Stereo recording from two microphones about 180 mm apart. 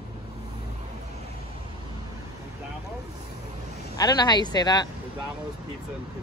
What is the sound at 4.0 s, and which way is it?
Speech, 20° left (ahead or behind).